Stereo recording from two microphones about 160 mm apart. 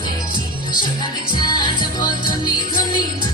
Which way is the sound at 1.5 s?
25° left (ahead or behind).